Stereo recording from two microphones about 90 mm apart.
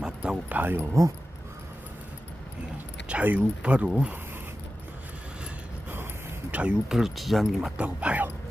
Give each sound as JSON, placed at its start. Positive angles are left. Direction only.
{"t": 0.0, "sound": "music", "side_deg": -15}
{"t": 3.1, "sound": "speech", "side_deg": -15}
{"t": 6.5, "sound": "speech", "side_deg": -15}
{"t": 6.9, "sound": "speech", "side_deg": -5}
{"t": 7.8, "sound": "speech", "side_deg": -15}